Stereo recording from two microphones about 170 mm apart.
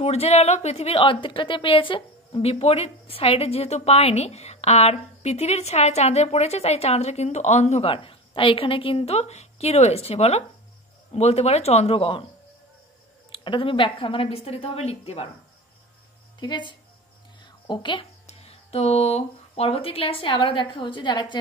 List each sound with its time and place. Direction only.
0.0 s a woman's voice: 40° left (ahead or behind)
13.3 s a woman's voice: 30° left (ahead or behind)
16.3 s speech: 25° left (ahead or behind)
17.4 s a sound: 25° left (ahead or behind)
18.2 s speech: 35° left (ahead or behind)